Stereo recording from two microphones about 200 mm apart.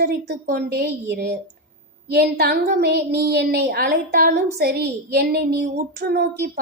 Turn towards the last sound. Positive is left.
turn(degrees=-50)  # may be behind; listen again after turning